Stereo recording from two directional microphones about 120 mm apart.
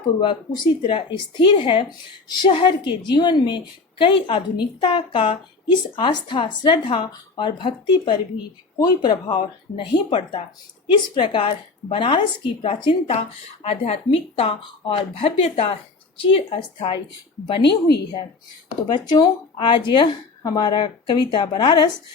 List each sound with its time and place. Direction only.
0.2 s a woman's voice: 40° left (ahead or behind)
18.9 s speech: 40° left (ahead or behind)